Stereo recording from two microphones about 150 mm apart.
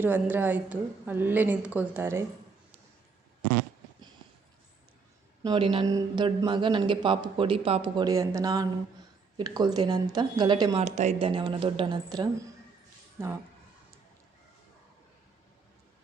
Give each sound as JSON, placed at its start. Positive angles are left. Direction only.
{"t": 0.0, "sound": "a woman's voice", "side_deg": -15}
{"t": 5.4, "sound": "speech", "side_deg": -30}
{"t": 10.8, "sound": "speech", "side_deg": -50}
{"t": 11.3, "sound": "speech", "side_deg": -35}
{"t": 13.2, "sound": "a woman's voice", "side_deg": -15}